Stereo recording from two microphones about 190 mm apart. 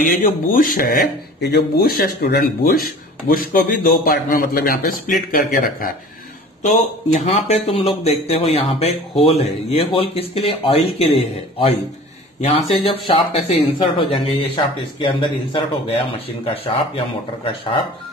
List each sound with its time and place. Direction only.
0.0 s speech: 45° left (ahead or behind)
7.2 s speech: 35° left (ahead or behind)
12.7 s speech: 25° left (ahead or behind)